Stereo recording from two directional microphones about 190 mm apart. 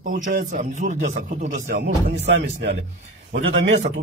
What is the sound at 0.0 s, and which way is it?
A man's voice, 40° right (ahead or behind).